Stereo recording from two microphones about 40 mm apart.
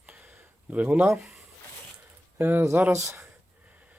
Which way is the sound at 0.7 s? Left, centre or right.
Right.